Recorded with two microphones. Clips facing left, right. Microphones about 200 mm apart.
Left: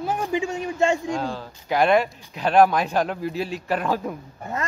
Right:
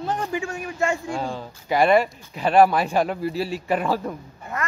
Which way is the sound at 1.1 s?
10° right (ahead or behind).